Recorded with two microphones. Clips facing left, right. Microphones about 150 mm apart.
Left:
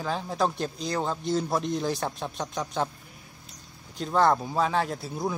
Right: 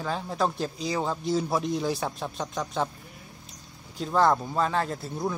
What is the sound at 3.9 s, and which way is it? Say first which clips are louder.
A man's voice: even; centre (ahead or behind).